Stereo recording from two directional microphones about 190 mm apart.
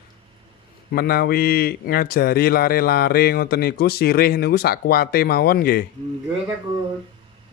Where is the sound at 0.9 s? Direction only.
55° left (ahead or behind).